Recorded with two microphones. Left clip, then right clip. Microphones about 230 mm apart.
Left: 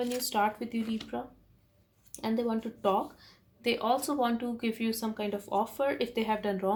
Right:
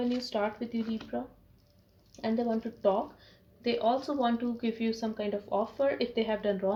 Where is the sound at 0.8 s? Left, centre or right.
Centre.